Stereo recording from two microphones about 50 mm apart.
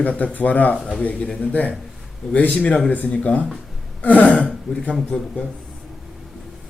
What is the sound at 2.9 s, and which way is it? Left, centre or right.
Speech, left.